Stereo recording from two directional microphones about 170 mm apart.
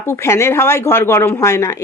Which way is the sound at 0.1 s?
15° left (ahead or behind).